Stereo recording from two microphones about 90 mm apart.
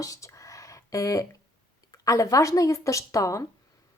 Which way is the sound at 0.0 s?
35° left (ahead or behind).